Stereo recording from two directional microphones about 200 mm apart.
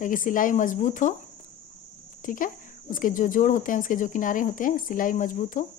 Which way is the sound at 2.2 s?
40° left (ahead or behind).